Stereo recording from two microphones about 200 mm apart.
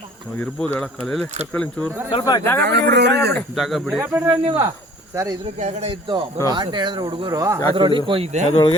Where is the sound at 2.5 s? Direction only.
55° right (ahead or behind).